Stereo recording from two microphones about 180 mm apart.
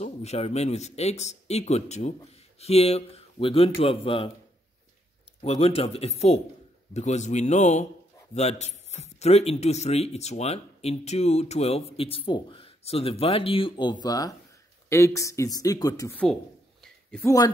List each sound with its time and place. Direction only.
0.0 s speech: 35° left (ahead or behind)
5.4 s speech: 35° left (ahead or behind); by 16.1 s 20° left (ahead or behind)
16.8 s a sound: 5° left (ahead or behind)